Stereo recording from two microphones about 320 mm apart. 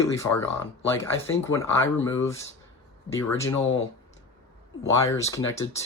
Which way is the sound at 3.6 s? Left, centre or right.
Left.